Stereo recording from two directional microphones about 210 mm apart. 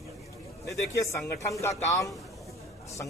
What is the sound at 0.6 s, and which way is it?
A man's voice, 15° left (ahead or behind).